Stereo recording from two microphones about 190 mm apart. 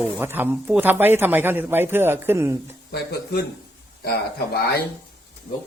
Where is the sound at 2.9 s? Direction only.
60° left (ahead or behind).